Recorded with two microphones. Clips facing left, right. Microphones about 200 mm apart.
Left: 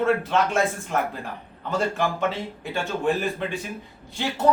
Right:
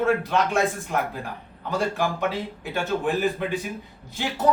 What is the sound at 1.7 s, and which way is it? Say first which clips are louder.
Speech: even; centre (ahead or behind).